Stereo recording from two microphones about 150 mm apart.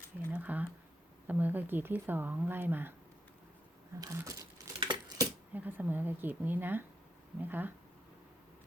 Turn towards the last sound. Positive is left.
turn(degrees=-10)  # may be behind; listen again after turning